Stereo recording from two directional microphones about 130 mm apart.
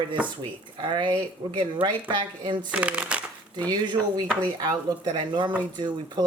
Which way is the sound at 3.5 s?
35° right (ahead or behind).